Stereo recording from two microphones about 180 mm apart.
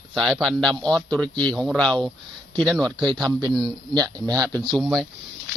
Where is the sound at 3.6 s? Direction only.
20° right (ahead or behind).